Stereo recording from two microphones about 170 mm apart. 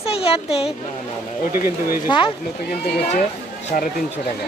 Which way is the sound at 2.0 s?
30° left (ahead or behind).